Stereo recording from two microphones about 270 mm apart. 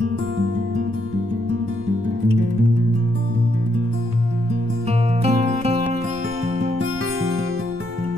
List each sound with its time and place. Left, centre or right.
4.8 s music: right